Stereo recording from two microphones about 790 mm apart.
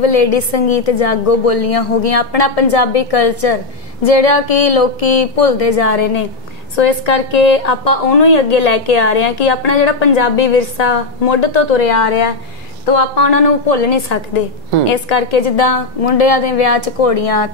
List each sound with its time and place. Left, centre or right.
0.0 s a woman's voice: left
13.1 s a woman's voice: left